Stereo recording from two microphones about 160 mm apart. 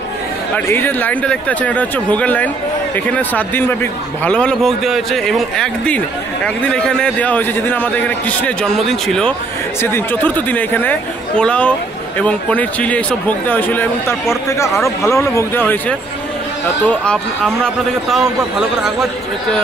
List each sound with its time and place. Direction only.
0.6 s a man's voice: 10° left (ahead or behind)
9.8 s a man's voice: 15° left (ahead or behind); by 19.0 s 5° right (ahead or behind)